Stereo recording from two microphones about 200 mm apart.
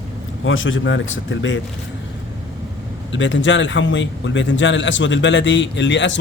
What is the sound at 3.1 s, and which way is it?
A man's voice, 70° left (ahead or behind).